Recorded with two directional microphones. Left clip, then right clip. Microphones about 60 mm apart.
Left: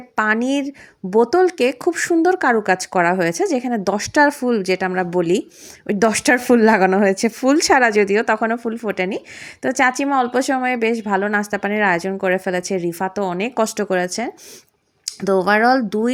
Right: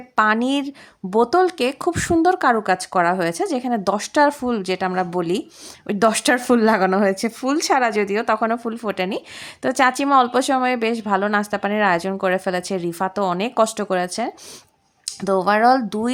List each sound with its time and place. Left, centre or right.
0.2 s a woman's voice: centre
2.6 s speech: left
3.8 s speech: left
5.9 s speech: left
7.4 s speech: left
8.4 s a woman's voice: centre
15.9 s a woman's voice: centre